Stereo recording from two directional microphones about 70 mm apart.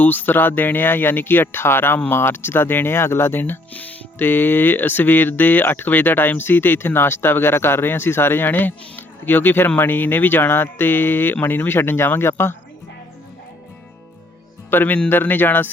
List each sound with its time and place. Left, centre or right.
0.0 s speech: left
14.7 s speech: left